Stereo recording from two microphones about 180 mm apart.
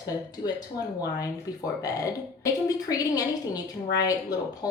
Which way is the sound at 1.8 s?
20° left (ahead or behind).